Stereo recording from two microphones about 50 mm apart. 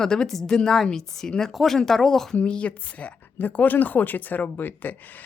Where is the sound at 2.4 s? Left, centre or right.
Left.